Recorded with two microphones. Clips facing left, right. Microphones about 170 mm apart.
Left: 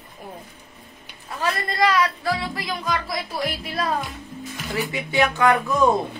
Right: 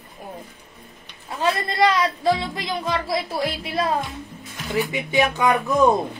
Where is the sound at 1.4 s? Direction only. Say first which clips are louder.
Right 3 dB; 25° right (ahead or behind).